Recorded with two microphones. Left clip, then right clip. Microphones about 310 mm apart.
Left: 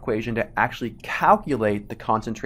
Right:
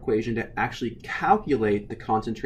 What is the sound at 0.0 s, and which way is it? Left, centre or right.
Speech, centre.